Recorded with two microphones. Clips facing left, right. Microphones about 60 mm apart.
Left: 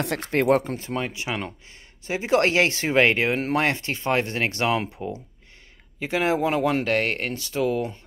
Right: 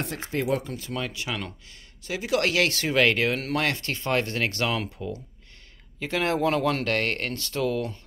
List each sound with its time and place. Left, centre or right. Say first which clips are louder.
0.0 s speech: left 5 dB; left
0.3 s speech: left 7 dB; left
0.7 s speech: left 4 dB; left